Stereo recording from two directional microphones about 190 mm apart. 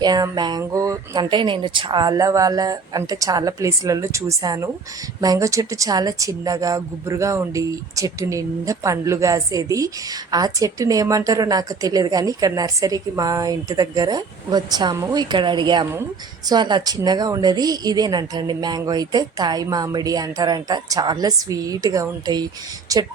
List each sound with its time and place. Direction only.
0.0 s speech: 20° right (ahead or behind)